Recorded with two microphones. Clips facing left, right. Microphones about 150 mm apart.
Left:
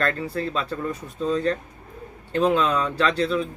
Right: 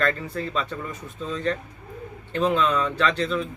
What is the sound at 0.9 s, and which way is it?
Speech, 40° left (ahead or behind).